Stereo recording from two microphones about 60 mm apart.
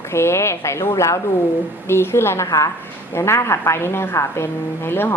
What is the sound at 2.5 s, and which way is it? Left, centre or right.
Speech, left.